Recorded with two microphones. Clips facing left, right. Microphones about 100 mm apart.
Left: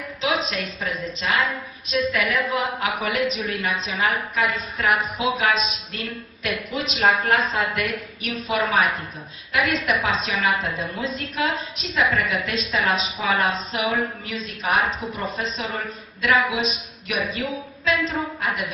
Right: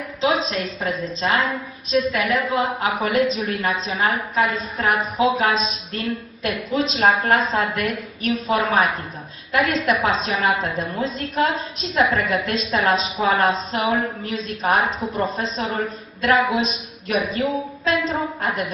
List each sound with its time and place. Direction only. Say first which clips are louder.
0.2 s a woman's voice: right 4 dB; 30° right (ahead or behind)